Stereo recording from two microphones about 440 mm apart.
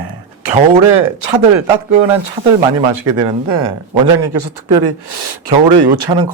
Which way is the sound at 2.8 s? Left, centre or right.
Right.